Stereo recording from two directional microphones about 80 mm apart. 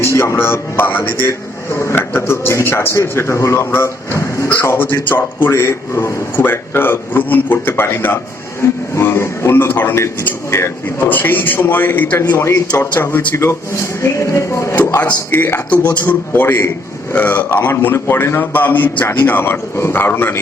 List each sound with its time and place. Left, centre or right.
0.0 s a man's voice: left
4.9 s speech: left
6.3 s a man's voice: left